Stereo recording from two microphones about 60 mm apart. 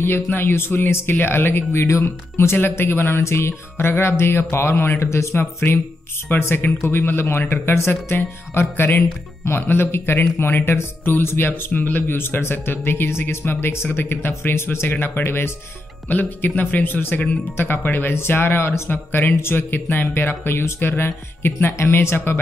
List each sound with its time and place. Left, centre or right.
0.0 s speech: left
3.1 s speech: left
14.9 s speech: left